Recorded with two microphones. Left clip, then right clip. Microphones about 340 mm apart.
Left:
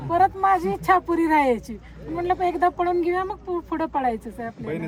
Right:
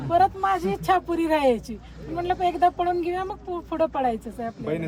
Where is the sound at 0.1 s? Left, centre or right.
Centre.